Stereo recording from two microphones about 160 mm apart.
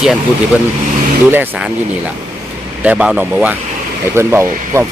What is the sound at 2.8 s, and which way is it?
Speech, 5° right (ahead or behind).